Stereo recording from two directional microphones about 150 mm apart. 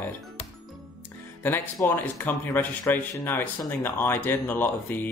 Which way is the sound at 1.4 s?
15° left (ahead or behind).